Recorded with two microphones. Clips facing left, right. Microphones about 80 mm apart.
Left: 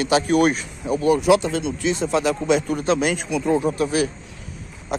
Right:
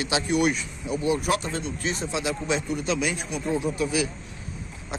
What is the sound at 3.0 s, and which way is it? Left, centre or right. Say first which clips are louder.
Speech: left 6 dB; left.